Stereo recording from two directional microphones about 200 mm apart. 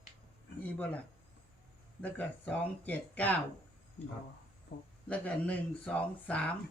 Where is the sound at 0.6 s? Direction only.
10° left (ahead or behind).